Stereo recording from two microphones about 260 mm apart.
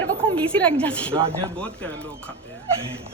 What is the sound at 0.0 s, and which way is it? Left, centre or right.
A woman's voice, centre.